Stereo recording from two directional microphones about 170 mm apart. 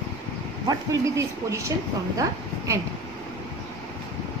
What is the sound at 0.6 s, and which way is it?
Speech, 20° right (ahead or behind).